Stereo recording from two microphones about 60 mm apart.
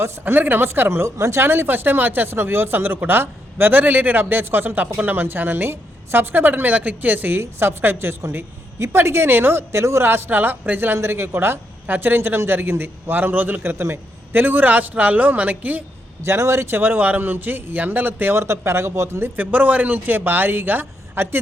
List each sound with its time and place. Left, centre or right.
0.0 s speech: right
1.5 s speech: right
10.9 s a woman's voice: right
16.2 s speech: right
18.3 s speech: right
19.4 s speech: right